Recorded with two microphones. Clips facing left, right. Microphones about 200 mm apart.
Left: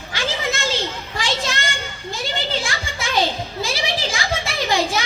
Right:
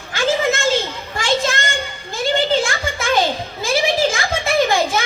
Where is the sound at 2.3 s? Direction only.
50° right (ahead or behind).